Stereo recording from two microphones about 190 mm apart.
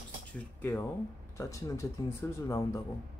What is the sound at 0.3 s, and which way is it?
Speech, 10° left (ahead or behind).